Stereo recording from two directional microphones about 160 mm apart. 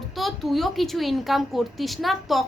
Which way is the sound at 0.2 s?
Centre (ahead or behind).